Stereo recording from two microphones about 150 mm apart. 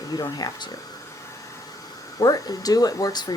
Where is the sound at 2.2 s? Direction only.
25° left (ahead or behind).